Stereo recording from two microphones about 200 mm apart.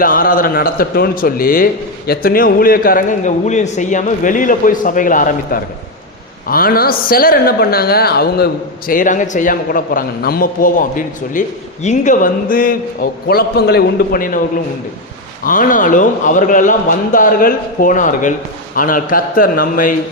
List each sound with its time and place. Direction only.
0.0 s a man's voice: 45° left (ahead or behind)
8.9 s a man's voice: 40° left (ahead or behind)
15.4 s speech: 40° left (ahead or behind)